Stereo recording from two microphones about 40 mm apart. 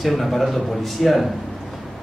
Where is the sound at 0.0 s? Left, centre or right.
Centre.